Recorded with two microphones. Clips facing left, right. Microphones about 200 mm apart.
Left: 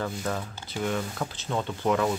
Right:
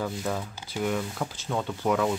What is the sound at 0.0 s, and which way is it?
Speech, 5° right (ahead or behind).